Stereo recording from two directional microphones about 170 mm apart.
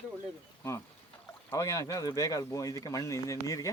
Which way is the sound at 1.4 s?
20° left (ahead or behind).